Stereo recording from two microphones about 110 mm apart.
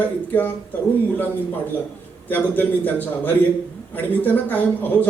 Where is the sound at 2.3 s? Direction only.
15° left (ahead or behind).